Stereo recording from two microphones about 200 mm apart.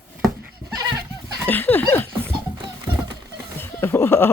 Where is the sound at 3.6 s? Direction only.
10° left (ahead or behind).